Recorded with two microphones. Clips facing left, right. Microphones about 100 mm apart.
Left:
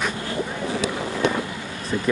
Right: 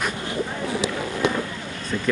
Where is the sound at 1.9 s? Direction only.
15° left (ahead or behind).